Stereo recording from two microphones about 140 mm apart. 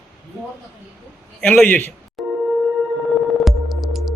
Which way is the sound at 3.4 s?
Centre (ahead or behind).